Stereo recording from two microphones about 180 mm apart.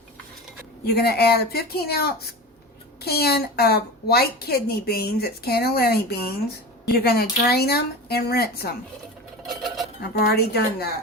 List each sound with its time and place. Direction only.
0.9 s a woman's voice: 60° left (ahead or behind)
9.5 s a sound: centre (ahead or behind)
10.0 s a woman's voice: 65° left (ahead or behind)